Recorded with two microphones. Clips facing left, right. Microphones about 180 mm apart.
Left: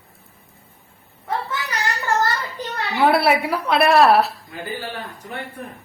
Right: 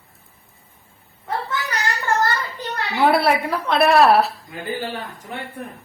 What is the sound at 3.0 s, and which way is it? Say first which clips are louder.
A woman's voice: even; centre (ahead or behind).